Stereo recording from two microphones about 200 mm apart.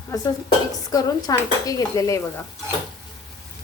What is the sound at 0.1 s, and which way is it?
Dishes, 15° left (ahead or behind).